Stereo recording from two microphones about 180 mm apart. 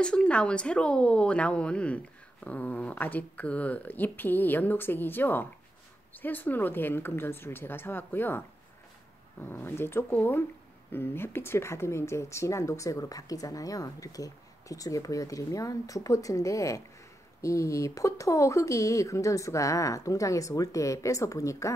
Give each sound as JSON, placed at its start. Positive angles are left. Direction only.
{"t": 0.0, "sound": "speech", "side_deg": 5}